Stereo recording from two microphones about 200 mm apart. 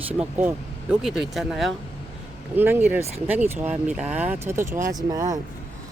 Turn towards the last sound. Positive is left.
turn(degrees=-20)  # may be behind; listen again after turning